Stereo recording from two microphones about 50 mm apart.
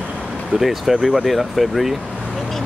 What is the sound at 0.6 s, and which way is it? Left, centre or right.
Speech, centre.